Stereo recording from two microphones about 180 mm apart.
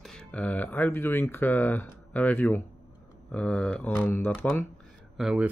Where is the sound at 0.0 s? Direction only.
5° left (ahead or behind).